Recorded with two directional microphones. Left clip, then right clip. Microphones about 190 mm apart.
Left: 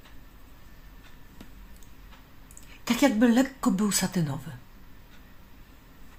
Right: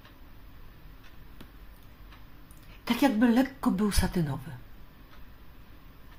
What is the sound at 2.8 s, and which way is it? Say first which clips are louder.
A woman's voice: left 2 dB; 10° left (ahead or behind).